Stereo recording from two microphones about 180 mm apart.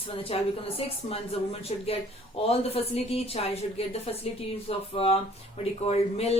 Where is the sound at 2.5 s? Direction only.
35° left (ahead or behind).